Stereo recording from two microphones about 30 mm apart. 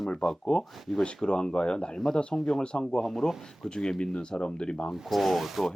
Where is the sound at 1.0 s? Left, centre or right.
Left.